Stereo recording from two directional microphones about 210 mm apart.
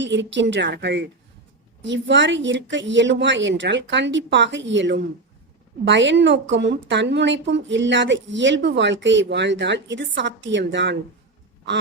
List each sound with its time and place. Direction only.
0.0 s a woman's voice: 60° right (ahead or behind)